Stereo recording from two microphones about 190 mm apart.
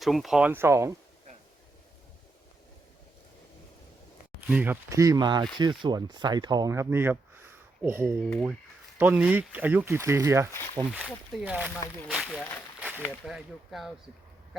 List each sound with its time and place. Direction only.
0.0 s speech: centre (ahead or behind)
4.4 s speech: 5° right (ahead or behind)
8.2 s speech: 5° left (ahead or behind)
9.0 s speech: 10° right (ahead or behind)
11.7 s speech: 10° left (ahead or behind)
12.1 s speech: centre (ahead or behind)